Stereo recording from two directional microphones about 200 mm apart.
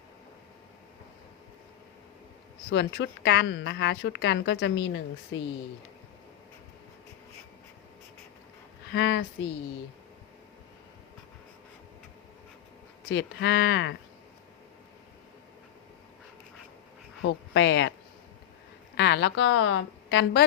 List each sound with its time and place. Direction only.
2.6 s a woman's voice: 65° left (ahead or behind)
8.9 s a woman's voice: 60° left (ahead or behind)
13.1 s a woman's voice: 60° left (ahead or behind)
17.2 s a woman's voice: 65° left (ahead or behind)
18.9 s a woman's voice: 60° left (ahead or behind)